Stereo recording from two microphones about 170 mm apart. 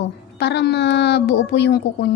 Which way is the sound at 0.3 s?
85° left.